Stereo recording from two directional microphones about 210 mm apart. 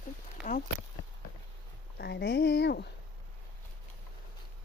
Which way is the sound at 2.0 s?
50° left (ahead or behind).